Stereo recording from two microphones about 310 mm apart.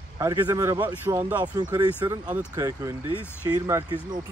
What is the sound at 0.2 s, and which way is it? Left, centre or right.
Speech, centre.